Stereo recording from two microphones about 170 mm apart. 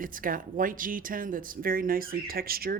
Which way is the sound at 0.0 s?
55° right (ahead or behind).